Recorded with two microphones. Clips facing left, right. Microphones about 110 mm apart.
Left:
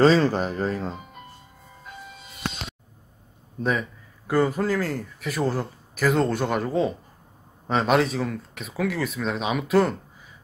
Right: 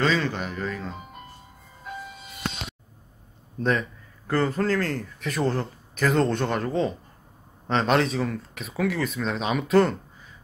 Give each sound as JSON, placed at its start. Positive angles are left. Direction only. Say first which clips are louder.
{"t": 0.0, "sound": "speech", "louder": "left 7 dB", "side_deg": 35}
{"t": 3.5, "sound": "a man's voice", "louder": "right 1 dB", "side_deg": 5}